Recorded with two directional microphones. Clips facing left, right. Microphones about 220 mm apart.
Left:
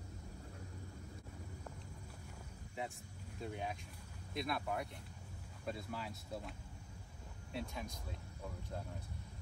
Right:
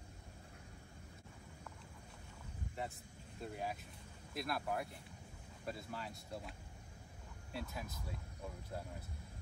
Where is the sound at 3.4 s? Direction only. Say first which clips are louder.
Even; centre (ahead or behind).